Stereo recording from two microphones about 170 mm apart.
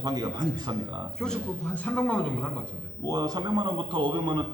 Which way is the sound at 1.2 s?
5° left (ahead or behind).